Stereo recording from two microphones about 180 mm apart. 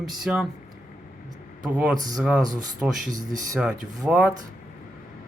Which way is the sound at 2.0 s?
20° right (ahead or behind).